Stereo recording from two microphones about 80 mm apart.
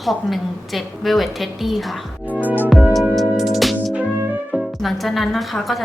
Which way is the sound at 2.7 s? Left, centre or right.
Centre.